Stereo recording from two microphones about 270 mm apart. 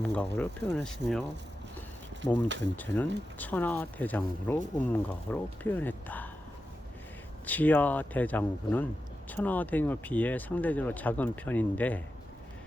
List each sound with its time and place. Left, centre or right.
0.0 s speech: centre
2.7 s speech: centre
7.4 s speech: centre